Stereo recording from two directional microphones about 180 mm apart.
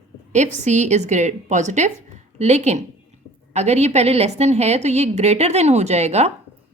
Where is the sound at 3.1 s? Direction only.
35° right (ahead or behind).